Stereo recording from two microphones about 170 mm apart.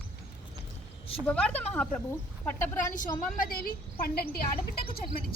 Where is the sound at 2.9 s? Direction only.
50° left (ahead or behind).